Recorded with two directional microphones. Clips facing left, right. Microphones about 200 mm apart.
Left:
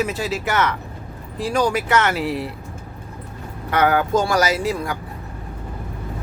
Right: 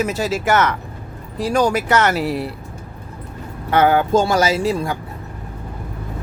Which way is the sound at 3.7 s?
25° right (ahead or behind).